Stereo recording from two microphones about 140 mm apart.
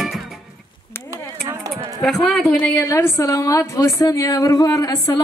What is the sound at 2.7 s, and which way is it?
A woman's voice, 20° left (ahead or behind).